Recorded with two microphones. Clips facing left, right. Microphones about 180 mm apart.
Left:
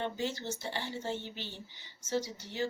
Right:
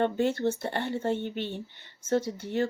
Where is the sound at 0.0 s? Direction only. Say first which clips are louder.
Right 10 dB; 60° right (ahead or behind).